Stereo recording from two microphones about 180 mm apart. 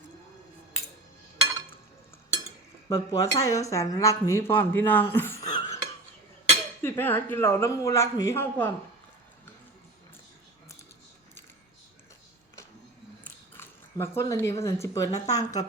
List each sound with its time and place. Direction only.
2.9 s speech: 15° left (ahead or behind)
5.1 s a sound: 15° left (ahead or behind)
6.8 s speech: 10° left (ahead or behind)
13.2 s speech: 15° left (ahead or behind)